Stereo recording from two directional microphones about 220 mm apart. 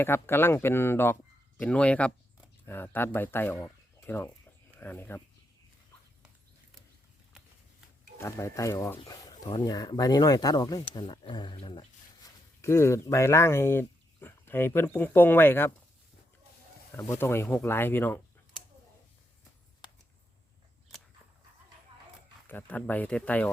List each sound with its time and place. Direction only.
0.0 s speech: 10° left (ahead or behind)
8.2 s speech: 15° left (ahead or behind)
16.9 s speech: 10° left (ahead or behind)
22.4 s speech: 10° left (ahead or behind)